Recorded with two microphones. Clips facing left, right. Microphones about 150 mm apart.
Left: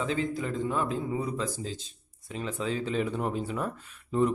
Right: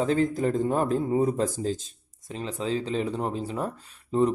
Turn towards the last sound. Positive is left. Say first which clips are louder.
# right 3 dB
turn(degrees=-35)  # may be behind; listen again after turning